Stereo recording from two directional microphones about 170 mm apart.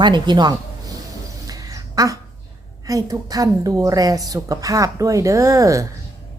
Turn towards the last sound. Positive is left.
turn(degrees=-20)  # may be behind; listen again after turning